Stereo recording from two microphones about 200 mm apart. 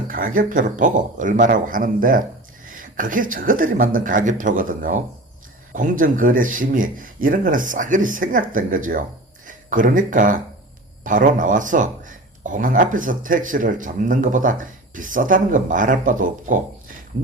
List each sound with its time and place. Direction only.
0.1 s speech: 45° right (ahead or behind)